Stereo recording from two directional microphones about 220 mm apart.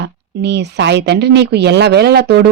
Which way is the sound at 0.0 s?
50° right (ahead or behind).